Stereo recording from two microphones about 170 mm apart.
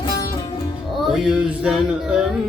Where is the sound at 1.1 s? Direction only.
5° right (ahead or behind).